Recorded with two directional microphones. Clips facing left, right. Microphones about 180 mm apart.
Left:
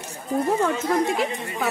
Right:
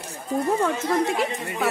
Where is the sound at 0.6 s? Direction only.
Centre (ahead or behind).